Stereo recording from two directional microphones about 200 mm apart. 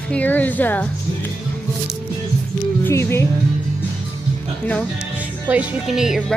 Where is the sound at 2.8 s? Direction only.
10° left (ahead or behind).